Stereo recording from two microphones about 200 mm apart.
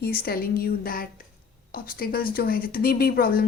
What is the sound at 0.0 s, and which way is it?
A woman's voice, 50° left (ahead or behind).